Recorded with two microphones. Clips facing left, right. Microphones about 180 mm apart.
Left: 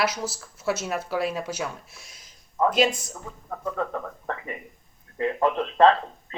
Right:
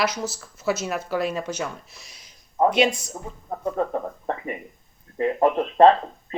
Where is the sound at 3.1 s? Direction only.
30° right (ahead or behind).